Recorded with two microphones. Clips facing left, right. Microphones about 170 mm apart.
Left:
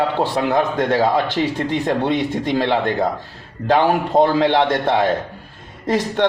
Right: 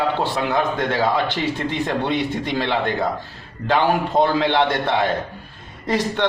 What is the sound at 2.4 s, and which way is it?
A man's voice, 40° left (ahead or behind).